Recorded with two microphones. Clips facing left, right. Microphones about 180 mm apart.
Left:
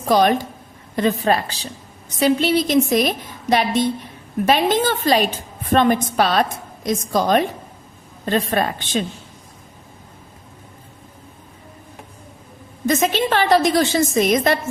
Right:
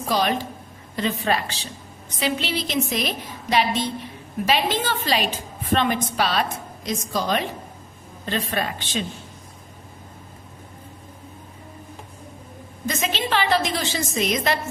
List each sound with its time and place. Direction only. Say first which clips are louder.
0.1 s a woman's voice: left 7 dB; 50° left (ahead or behind)
12.9 s a woman's voice: left 7 dB; 50° left (ahead or behind)